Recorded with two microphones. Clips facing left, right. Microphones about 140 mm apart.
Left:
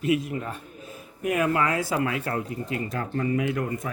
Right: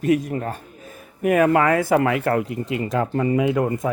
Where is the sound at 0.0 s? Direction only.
45° right (ahead or behind).